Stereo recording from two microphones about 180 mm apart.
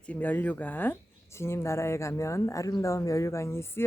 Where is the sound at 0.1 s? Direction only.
10° left (ahead or behind).